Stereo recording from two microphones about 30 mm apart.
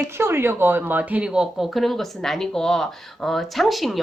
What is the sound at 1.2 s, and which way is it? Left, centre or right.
Speech, right.